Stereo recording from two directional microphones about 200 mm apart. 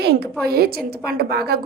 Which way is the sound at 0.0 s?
50° right (ahead or behind).